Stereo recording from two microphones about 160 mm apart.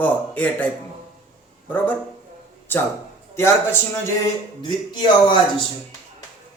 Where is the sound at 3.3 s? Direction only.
15° left (ahead or behind).